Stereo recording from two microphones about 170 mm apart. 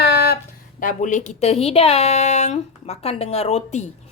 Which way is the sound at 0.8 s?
50° left (ahead or behind).